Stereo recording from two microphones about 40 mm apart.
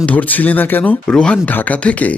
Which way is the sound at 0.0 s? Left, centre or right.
Left.